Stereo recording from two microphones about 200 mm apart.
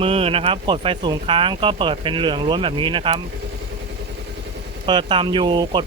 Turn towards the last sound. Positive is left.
turn(degrees=-20)  # may be behind; listen again after turning